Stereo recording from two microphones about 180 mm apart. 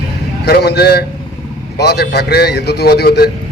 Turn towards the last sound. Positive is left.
turn(degrees=65)  # may be behind; listen again after turning